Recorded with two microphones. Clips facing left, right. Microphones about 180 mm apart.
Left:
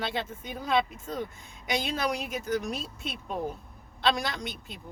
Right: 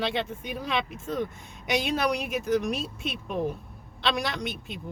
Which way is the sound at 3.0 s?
75° right (ahead or behind).